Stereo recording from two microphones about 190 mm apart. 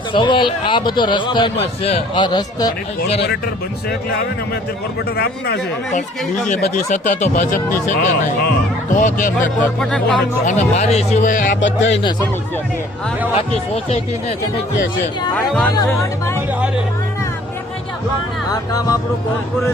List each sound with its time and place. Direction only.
0.1 s a man's voice: 25° left (ahead or behind)
5.1 s speech: 60° left (ahead or behind)
6.7 s speech: 40° left (ahead or behind)
9.6 s speech: 5° left (ahead or behind)
10.4 s speech: 35° left (ahead or behind)
11.6 s speech: 70° left (ahead or behind)
13.3 s speech: 35° left (ahead or behind)
15.4 s speech: 5° left (ahead or behind)
15.7 s speech: 15° left (ahead or behind)
18.5 s speech: 20° left (ahead or behind)